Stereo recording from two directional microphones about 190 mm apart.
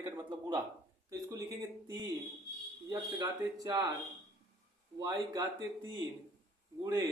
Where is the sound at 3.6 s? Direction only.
20° right (ahead or behind).